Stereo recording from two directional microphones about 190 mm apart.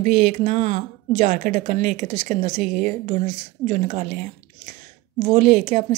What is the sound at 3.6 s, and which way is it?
Speech, 40° right (ahead or behind).